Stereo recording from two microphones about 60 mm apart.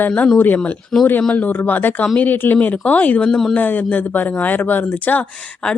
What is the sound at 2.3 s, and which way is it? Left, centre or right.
Speech, left.